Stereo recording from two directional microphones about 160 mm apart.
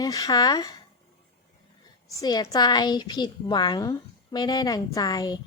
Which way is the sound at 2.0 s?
25° left (ahead or behind).